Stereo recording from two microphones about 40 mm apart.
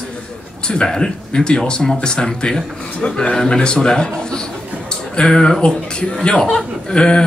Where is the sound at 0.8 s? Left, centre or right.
Centre.